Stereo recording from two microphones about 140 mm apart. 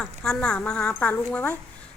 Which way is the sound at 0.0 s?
5° left (ahead or behind).